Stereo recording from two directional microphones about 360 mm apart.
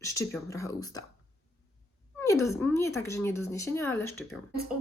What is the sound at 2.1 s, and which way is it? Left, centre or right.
Speech, centre.